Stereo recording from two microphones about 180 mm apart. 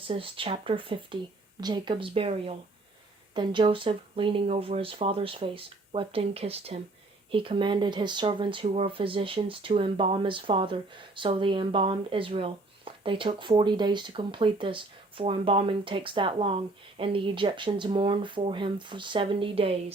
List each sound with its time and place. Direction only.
0.1 s speech: 30° right (ahead or behind)